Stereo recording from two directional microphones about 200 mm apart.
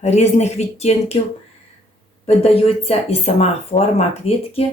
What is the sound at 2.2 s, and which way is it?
Speech, 30° left (ahead or behind).